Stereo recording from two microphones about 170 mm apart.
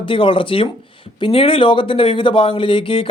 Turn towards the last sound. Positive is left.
turn(degrees=30)  # may be behind; listen again after turning